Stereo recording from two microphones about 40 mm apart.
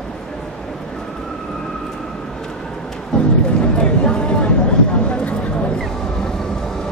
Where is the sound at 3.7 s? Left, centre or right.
Left.